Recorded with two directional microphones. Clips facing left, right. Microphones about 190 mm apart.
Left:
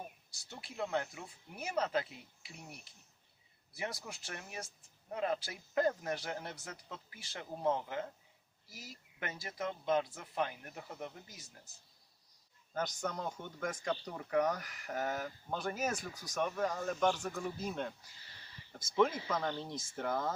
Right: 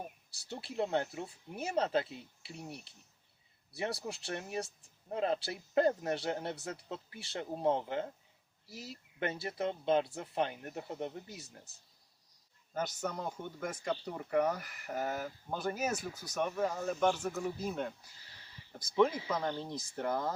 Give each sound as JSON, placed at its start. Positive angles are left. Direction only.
{"t": 0.4, "sound": "speech", "side_deg": -30}
{"t": 12.7, "sound": "speech", "side_deg": -5}
{"t": 18.9, "sound": "speech", "side_deg": -5}